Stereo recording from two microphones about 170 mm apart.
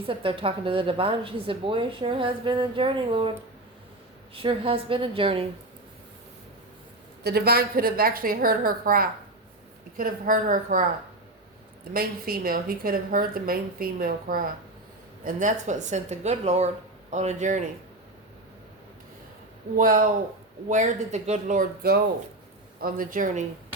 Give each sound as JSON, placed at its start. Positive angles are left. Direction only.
{"t": 0.0, "sound": "a woman's voice", "side_deg": -30}
{"t": 4.4, "sound": "a woman's voice", "side_deg": -35}
{"t": 7.3, "sound": "a woman's voice", "side_deg": -65}
{"t": 11.9, "sound": "a woman's voice", "side_deg": -60}
{"t": 19.7, "sound": "a woman's voice", "side_deg": -55}
{"t": 22.8, "sound": "speech", "side_deg": -60}